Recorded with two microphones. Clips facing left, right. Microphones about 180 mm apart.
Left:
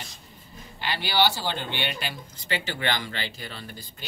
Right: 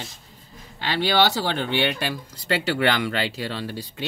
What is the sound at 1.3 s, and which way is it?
Speech, 70° right (ahead or behind).